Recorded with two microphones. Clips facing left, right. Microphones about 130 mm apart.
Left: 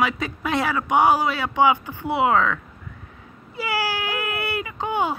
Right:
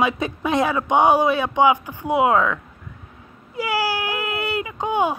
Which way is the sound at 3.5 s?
15° right (ahead or behind).